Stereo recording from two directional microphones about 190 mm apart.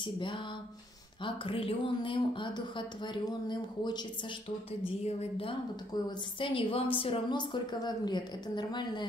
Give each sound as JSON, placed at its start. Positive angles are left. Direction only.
{"t": 0.0, "sound": "a woman's voice", "side_deg": 25}